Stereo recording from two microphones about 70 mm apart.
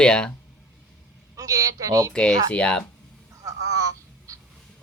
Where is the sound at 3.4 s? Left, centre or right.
Right.